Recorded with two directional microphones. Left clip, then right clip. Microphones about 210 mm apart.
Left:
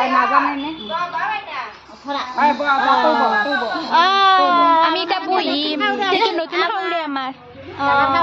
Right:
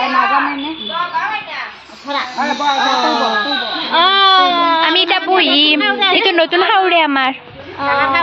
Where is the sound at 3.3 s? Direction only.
15° right (ahead or behind).